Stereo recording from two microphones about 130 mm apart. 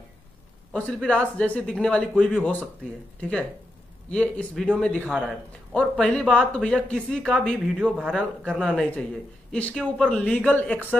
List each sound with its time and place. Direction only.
0.9 s a man's voice: 5° left (ahead or behind)
5.0 s speech: 5° right (ahead or behind)
8.1 s a man's voice: 5° left (ahead or behind)